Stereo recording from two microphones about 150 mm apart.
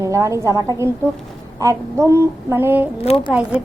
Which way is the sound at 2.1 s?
15° right (ahead or behind).